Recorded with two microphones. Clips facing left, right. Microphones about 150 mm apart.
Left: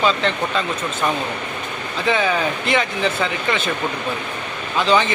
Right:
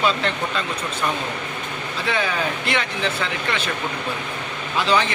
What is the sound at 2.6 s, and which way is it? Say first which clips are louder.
Speech: left 4 dB; centre (ahead or behind).